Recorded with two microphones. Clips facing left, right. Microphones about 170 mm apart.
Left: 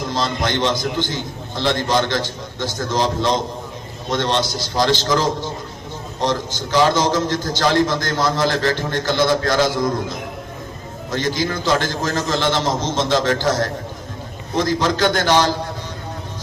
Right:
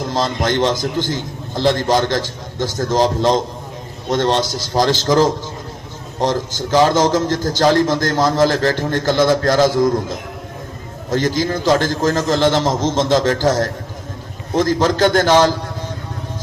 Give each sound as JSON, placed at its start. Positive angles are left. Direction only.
{"t": 0.1, "sound": "a man's voice", "side_deg": -40}
{"t": 6.2, "sound": "a man's voice", "side_deg": -45}
{"t": 11.1, "sound": "a man's voice", "side_deg": -45}